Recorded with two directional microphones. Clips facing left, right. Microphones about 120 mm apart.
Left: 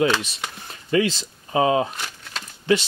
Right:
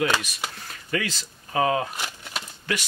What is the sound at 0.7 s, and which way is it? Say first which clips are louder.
Speech: left 9 dB; 25° left (ahead or behind).